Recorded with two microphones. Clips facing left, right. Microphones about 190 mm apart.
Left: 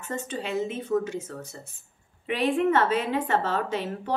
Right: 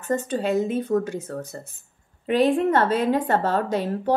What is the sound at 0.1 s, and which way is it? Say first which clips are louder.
A woman's voice: right 8 dB; 40° right (ahead or behind).